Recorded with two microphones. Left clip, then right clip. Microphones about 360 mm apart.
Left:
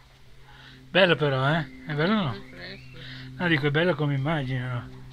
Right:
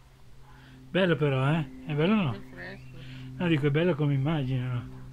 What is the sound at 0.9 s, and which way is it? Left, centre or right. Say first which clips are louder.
A man's voice: left 5 dB; centre.